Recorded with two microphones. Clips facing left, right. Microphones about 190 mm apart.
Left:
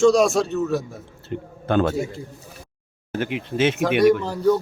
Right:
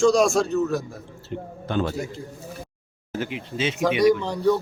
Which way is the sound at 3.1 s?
60° left (ahead or behind).